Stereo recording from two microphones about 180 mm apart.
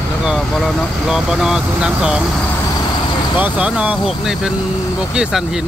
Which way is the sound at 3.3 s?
5° right (ahead or behind).